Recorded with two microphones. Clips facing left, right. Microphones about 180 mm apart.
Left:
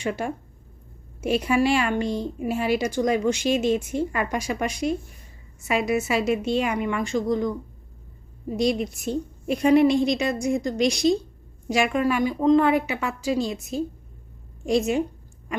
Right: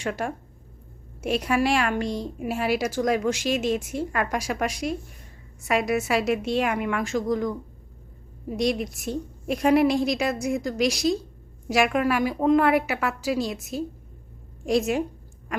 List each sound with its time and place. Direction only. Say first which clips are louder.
0.0 s a woman's voice: left 1 dB; centre (ahead or behind)